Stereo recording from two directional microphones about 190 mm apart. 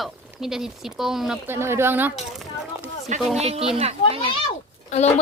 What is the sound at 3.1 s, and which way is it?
Speech, 40° right (ahead or behind).